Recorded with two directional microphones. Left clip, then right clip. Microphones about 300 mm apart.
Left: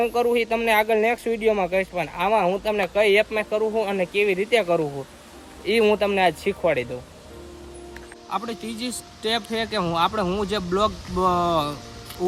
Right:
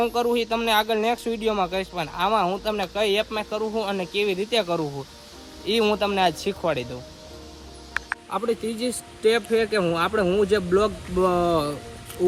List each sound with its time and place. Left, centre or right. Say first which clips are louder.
0.0 s speech: left 2 dB; centre
8.3 s speech: right 2 dB; centre